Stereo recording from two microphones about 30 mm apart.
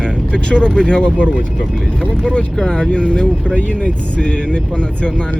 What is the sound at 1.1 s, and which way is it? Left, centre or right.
Speech, left.